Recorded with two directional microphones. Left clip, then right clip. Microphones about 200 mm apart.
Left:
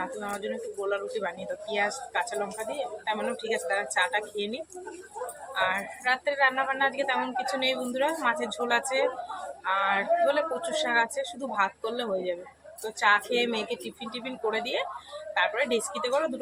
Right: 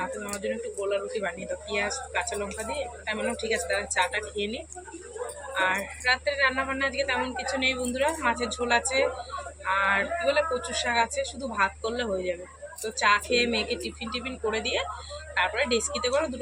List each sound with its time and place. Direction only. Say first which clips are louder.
0.1 s a woman's voice: right 1 dB; centre (ahead or behind)
5.5 s a woman's voice: right 1 dB; 5° left (ahead or behind)